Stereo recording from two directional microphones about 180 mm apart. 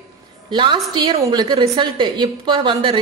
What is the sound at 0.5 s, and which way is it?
A woman's voice, 25° right (ahead or behind).